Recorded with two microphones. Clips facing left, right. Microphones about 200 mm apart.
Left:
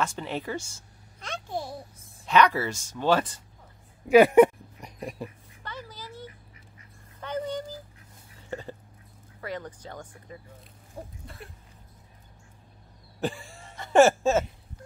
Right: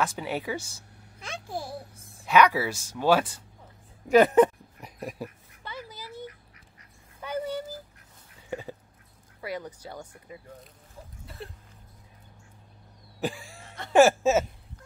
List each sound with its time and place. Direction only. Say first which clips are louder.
0.0 s speech: right 1 dB; 10° right (ahead or behind)
4.1 s speech: left 2 dB; 10° left (ahead or behind)
4.7 s a sound: even; 5° right (ahead or behind)
9.4 s speech: right 1 dB; 10° right (ahead or behind)
11.0 s throat clearing: left 7 dB; 55° left (ahead or behind)
11.4 s a sound: right 6 dB; 30° right (ahead or behind)
13.2 s throat clearing: left 1 dB; centre (ahead or behind)
13.9 s music: even; 5° right (ahead or behind)